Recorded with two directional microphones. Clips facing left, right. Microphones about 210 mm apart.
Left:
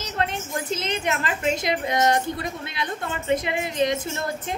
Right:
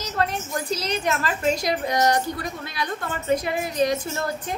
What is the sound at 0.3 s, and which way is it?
A woman's voice, 25° left (ahead or behind).